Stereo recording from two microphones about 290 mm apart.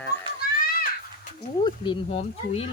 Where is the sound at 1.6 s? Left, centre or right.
Centre.